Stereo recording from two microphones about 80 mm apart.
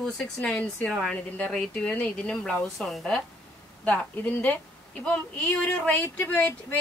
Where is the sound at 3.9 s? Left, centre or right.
Centre.